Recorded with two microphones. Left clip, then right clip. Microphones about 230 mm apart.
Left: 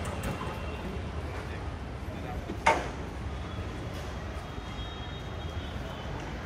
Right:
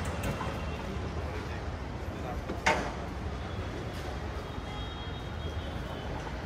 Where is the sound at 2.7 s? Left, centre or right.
Left.